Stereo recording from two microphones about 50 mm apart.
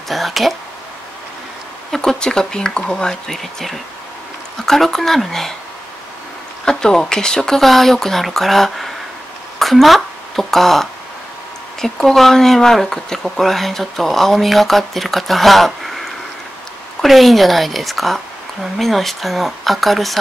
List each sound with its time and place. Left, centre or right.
0.1 s speech: centre
1.9 s speech: centre
6.6 s speech: centre
9.6 s a sound: centre
11.8 s speech: centre
17.0 s speech: centre